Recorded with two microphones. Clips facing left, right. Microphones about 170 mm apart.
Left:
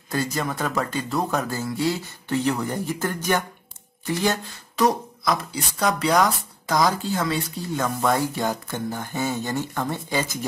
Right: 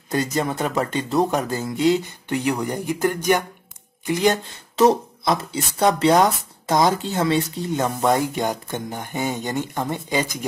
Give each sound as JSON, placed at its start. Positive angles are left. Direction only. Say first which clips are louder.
{"t": 0.1, "sound": "speech", "louder": "right 3 dB", "side_deg": -20}